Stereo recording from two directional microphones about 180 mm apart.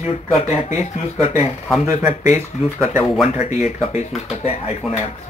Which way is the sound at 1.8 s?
15° right (ahead or behind).